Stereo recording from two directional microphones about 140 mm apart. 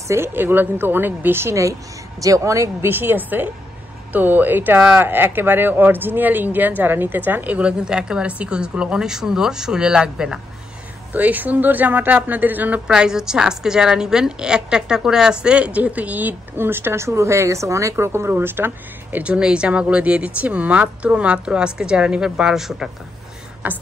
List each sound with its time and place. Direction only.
0.1 s a woman's voice: 15° right (ahead or behind)